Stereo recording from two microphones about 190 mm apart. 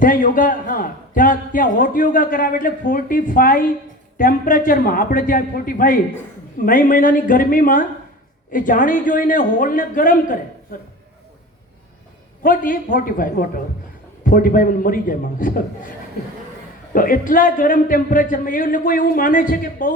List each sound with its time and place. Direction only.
0.0 s a man's voice: 45° left (ahead or behind)
12.4 s a man's voice: 45° left (ahead or behind)
16.9 s a man's voice: 45° left (ahead or behind)